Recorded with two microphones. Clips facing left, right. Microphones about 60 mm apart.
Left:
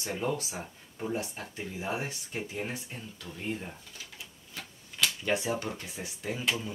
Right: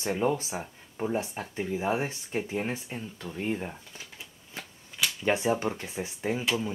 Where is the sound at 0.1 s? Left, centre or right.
Right.